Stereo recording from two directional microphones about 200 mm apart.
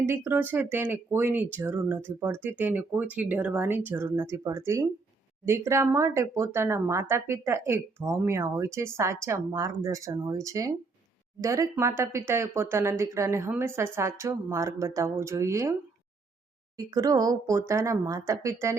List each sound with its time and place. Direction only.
0.0 s speech: 10° right (ahead or behind)
16.7 s speech: 20° right (ahead or behind)